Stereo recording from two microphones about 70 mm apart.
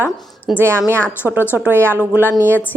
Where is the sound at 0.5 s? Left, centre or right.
Right.